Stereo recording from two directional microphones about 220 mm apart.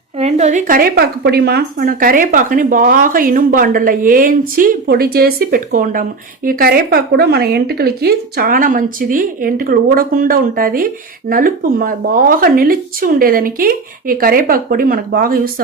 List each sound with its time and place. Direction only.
0.2 s speech: 30° right (ahead or behind)